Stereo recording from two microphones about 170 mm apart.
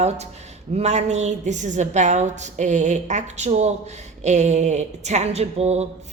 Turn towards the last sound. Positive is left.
turn(degrees=-40)  # may be behind; listen again after turning